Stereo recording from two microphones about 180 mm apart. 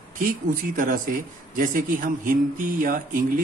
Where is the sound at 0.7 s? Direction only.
50° right (ahead or behind).